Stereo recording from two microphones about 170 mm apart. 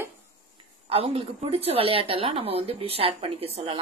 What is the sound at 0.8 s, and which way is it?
Speech, 35° right (ahead or behind).